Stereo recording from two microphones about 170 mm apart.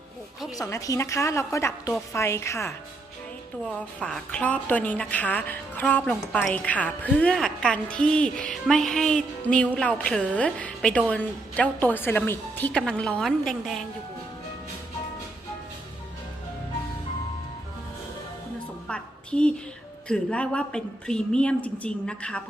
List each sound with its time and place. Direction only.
0.5 s a woman's voice: 20° left (ahead or behind); by 13.8 s centre (ahead or behind)
18.9 s a sound: 5° left (ahead or behind)
20.1 s a woman's voice: 5° left (ahead or behind)